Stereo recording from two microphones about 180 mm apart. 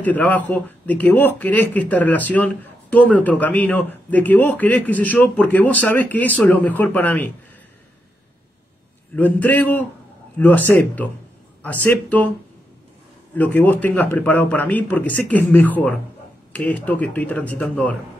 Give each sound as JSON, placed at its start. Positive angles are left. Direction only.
{"t": 0.0, "sound": "speech", "side_deg": 10}
{"t": 9.1, "sound": "speech", "side_deg": 10}
{"t": 13.3, "sound": "speech", "side_deg": 10}